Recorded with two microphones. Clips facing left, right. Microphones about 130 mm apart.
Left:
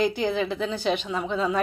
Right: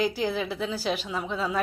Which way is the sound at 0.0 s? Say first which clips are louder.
Left 3 dB; 5° right (ahead or behind).